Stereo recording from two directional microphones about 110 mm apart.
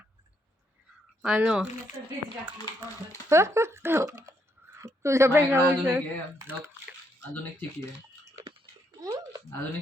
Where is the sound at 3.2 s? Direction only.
25° right (ahead or behind).